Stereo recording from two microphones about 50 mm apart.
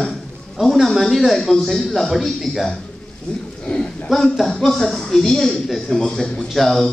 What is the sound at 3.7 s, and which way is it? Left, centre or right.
Speech, left.